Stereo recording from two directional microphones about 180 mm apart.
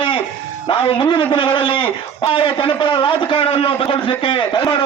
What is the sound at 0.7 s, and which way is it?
A man's voice, 30° left (ahead or behind).